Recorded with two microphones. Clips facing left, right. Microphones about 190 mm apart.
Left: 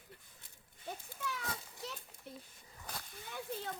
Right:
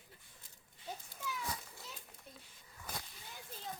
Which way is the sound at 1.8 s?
70° left (ahead or behind).